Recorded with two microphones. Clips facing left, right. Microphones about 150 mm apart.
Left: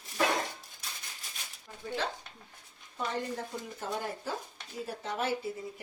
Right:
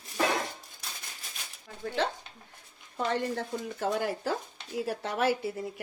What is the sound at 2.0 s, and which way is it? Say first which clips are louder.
A woman's voice: right 8 dB; 70° right (ahead or behind).